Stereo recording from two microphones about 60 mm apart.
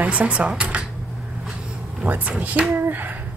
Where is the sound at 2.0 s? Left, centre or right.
Right.